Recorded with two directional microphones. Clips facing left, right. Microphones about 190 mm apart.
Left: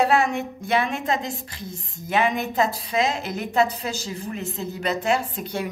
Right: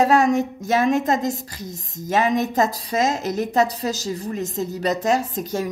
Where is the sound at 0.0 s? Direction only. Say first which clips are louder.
Right 4 dB; 40° right (ahead or behind).